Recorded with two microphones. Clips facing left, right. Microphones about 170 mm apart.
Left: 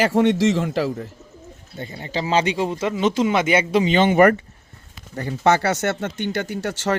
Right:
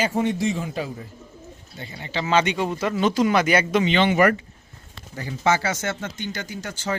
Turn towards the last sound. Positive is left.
turn(degrees=75)  # may be behind; listen again after turning